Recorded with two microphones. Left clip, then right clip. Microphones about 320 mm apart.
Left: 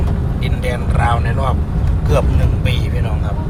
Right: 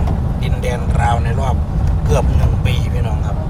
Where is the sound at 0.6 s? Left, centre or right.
Centre.